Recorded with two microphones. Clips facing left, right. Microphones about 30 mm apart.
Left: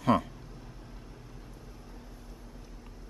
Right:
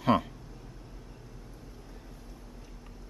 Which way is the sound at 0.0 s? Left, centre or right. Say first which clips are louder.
Even; centre.